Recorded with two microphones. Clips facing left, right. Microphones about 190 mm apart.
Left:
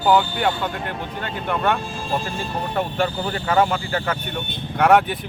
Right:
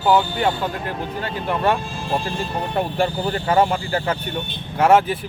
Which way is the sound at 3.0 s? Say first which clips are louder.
Right 2 dB; 35° right (ahead or behind).